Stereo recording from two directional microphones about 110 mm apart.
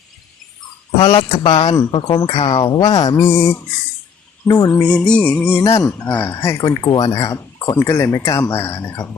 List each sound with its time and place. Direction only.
1.0 s speech: 50° left (ahead or behind); by 4.7 s 35° left (ahead or behind)
4.7 s music: 10° left (ahead or behind)
6.3 s speech: 25° left (ahead or behind)
6.6 s speech: 40° left (ahead or behind)
7.8 s speech: 25° left (ahead or behind)
8.4 s speech: 20° left (ahead or behind)